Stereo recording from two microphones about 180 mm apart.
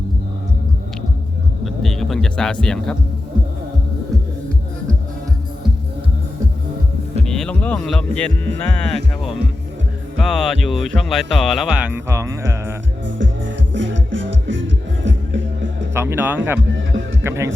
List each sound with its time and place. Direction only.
1.6 s music: centre (ahead or behind)
7.3 s speech: 5° left (ahead or behind)
10.2 s speech: centre (ahead or behind); by 12.7 s 15° right (ahead or behind)
13.7 s music: 90° right
16.0 s speech: 10° right (ahead or behind)
16.6 s music: 80° right
17.2 s a man's voice: 15° right (ahead or behind)